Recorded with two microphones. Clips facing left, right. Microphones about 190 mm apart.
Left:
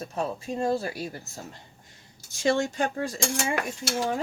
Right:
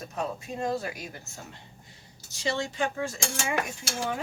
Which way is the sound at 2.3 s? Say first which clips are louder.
Left 6 dB; 50° left (ahead or behind).